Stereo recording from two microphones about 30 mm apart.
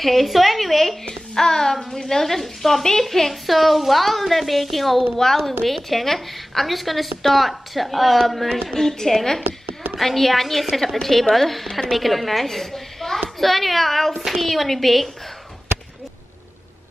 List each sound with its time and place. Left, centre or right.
0.0 s a woman's voice: centre
1.3 s a woman's voice: centre
5.1 s a woman's voice: centre
8.7 s a woman's voice: centre